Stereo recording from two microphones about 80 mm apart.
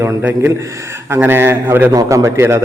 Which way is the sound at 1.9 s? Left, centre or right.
Right.